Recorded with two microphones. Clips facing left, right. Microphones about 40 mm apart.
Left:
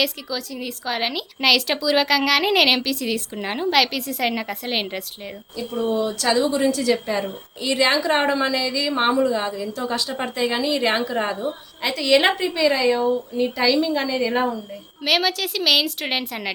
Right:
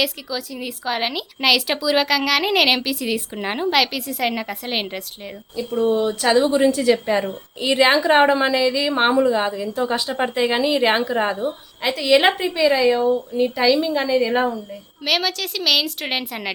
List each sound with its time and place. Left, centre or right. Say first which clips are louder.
0.0 s a woman's voice: right 1 dB; centre
5.9 s a woman's voice: right 3 dB; right; by 16.5 s centre